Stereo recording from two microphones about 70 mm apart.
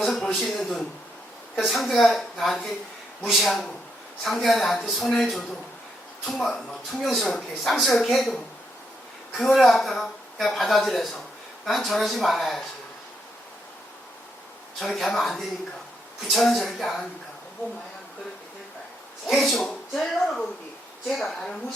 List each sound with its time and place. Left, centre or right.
0.0 s speech: centre
14.8 s speech: centre
19.4 s speech: centre